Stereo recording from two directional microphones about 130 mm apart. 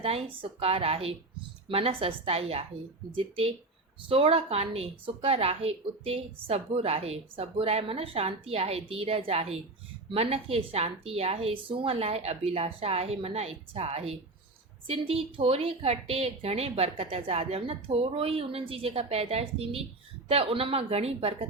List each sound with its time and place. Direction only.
0.0 s a woman's voice: 50° right (ahead or behind)
4.1 s a woman's voice: 50° right (ahead or behind)